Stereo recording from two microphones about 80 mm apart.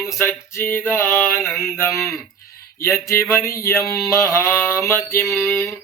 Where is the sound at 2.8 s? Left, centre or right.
Left.